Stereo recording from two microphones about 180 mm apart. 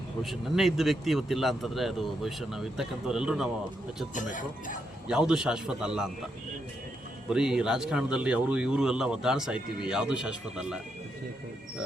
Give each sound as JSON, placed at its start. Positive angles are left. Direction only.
{"t": 0.2, "sound": "speech", "side_deg": 0}
{"t": 4.1, "sound": "speech", "side_deg": 45}
{"t": 5.0, "sound": "speech", "side_deg": -5}
{"t": 7.3, "sound": "speech", "side_deg": -5}